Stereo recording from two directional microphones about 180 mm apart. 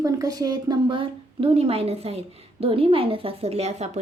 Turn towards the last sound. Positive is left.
turn(degrees=-35)  # may be behind; listen again after turning